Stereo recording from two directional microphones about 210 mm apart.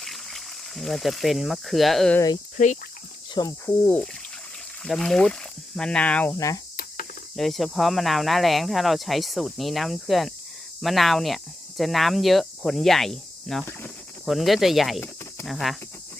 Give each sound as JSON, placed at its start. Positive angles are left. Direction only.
{"t": 0.0, "sound": "speech", "side_deg": 0}
{"t": 3.4, "sound": "cricket", "side_deg": 20}
{"t": 3.8, "sound": "a sound", "side_deg": 5}
{"t": 4.8, "sound": "speech", "side_deg": 5}
{"t": 6.7, "sound": "cricket", "side_deg": 40}
{"t": 7.3, "sound": "speech", "side_deg": 0}